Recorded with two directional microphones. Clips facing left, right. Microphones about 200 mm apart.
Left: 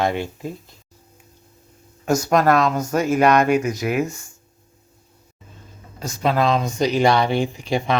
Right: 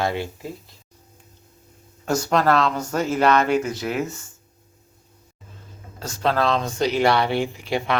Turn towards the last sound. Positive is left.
turn(degrees=15)  # may be behind; listen again after turning